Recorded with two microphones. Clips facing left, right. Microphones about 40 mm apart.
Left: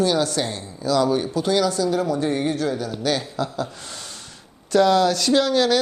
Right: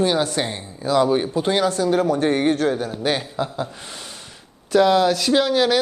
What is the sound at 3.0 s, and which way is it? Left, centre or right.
Speech, right.